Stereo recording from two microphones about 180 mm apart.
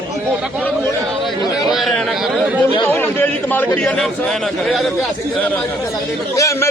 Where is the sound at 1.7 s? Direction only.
Centre (ahead or behind).